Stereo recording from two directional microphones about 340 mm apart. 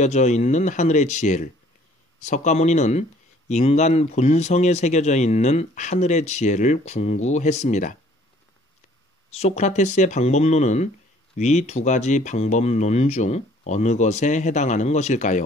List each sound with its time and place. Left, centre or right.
0.0 s speech: centre
9.3 s speech: centre